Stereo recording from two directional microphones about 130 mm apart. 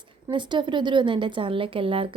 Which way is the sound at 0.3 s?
35° right (ahead or behind).